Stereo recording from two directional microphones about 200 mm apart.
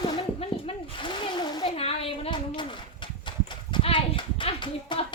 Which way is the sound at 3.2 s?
25° left (ahead or behind).